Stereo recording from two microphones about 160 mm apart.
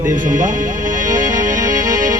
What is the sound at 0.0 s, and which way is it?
Speech, 15° right (ahead or behind).